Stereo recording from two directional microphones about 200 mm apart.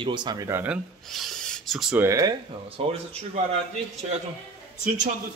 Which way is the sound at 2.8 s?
30° right (ahead or behind).